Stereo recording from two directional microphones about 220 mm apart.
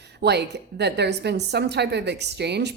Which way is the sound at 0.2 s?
50° right (ahead or behind).